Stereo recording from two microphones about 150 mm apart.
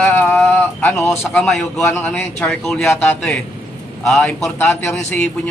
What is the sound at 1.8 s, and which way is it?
Speech, 15° left (ahead or behind).